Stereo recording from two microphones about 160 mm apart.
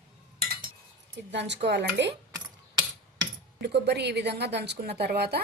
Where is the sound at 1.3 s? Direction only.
90° right.